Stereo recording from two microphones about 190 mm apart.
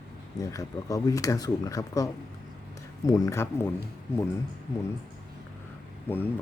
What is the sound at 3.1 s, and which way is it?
Speech, 20° left (ahead or behind).